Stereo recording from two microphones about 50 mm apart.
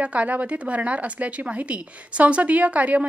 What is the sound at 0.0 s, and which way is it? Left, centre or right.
Speech, right.